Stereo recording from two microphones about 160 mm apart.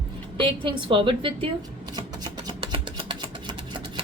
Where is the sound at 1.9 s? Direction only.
25° right (ahead or behind).